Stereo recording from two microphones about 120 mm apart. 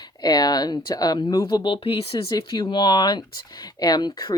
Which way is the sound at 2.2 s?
35° left (ahead or behind).